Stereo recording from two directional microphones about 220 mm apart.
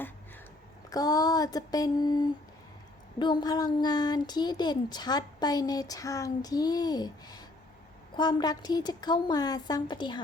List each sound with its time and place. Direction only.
0.9 s a woman's voice: 15° left (ahead or behind)